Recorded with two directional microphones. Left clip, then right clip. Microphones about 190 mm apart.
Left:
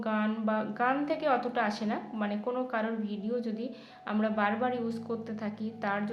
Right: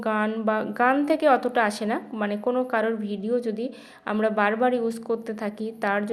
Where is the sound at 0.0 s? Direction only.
40° right (ahead or behind).